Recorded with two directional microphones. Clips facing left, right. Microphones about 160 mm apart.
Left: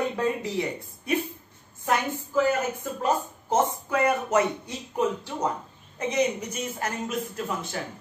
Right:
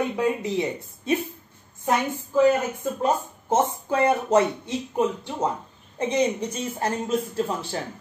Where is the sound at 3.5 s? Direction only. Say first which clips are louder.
Right 2 dB; 30° right (ahead or behind).